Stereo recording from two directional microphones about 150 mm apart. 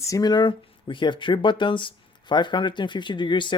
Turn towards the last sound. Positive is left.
turn(degrees=30)  # may be behind; listen again after turning